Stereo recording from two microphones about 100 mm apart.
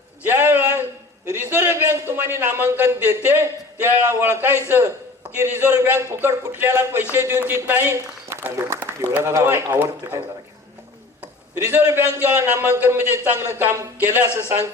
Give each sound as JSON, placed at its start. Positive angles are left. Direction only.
{"t": 0.2, "sound": "a sound", "side_deg": -20}
{"t": 1.3, "sound": "a man's voice", "side_deg": -20}
{"t": 11.7, "sound": "a man's voice", "side_deg": -25}